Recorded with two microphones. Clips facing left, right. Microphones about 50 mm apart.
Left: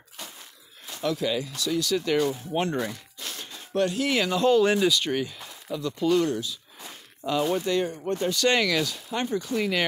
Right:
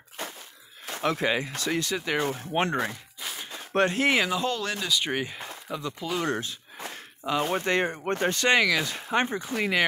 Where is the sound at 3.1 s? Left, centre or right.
Centre.